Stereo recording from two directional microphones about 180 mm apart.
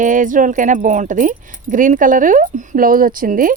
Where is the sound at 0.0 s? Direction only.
45° right (ahead or behind).